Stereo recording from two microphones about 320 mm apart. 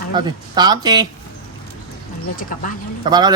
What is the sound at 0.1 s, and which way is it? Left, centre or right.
Speech, centre.